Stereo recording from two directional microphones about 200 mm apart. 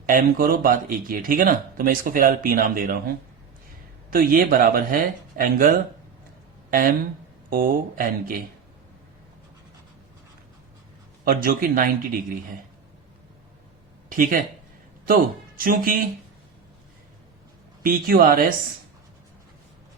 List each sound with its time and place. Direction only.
0.0 s speech: 45° right (ahead or behind)
4.1 s speech: 45° right (ahead or behind)
11.3 s speech: 45° right (ahead or behind)
14.1 s speech: 45° right (ahead or behind)
17.8 s speech: 45° right (ahead or behind)